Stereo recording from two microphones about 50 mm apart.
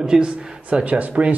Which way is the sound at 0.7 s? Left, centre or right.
Right.